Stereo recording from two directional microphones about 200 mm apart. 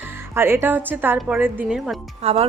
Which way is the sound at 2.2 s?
30° right (ahead or behind).